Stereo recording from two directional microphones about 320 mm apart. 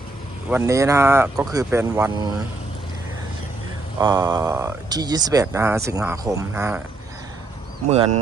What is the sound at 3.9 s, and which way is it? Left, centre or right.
Speech, centre.